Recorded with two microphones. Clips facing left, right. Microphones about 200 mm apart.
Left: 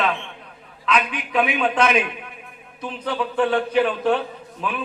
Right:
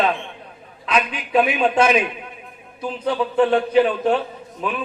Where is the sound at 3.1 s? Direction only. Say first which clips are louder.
Right 4 dB; 20° right (ahead or behind).